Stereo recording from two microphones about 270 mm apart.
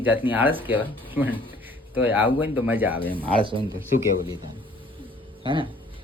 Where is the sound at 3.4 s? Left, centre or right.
Centre.